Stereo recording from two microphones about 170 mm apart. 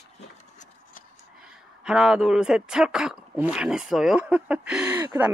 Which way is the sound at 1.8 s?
5° right (ahead or behind).